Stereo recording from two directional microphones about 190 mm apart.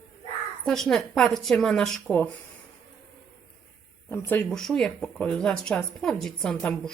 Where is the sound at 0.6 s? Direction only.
Centre (ahead or behind).